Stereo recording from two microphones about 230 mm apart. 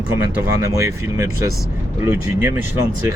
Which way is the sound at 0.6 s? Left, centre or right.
Centre.